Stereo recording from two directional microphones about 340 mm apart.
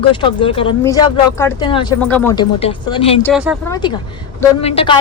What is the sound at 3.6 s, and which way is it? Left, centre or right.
Speech, centre.